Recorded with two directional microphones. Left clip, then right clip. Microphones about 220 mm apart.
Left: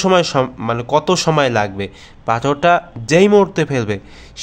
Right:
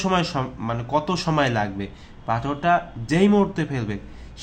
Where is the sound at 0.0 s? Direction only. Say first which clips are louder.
Left 9 dB; 40° left (ahead or behind).